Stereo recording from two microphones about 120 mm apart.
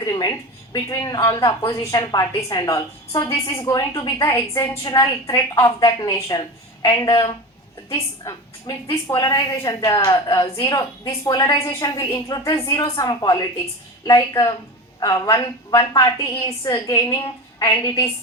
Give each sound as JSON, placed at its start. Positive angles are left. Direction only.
{"t": 0.0, "sound": "a woman's voice", "side_deg": 30}
{"t": 4.3, "sound": "a woman's voice", "side_deg": 20}
{"t": 4.7, "sound": "a woman's voice", "side_deg": 30}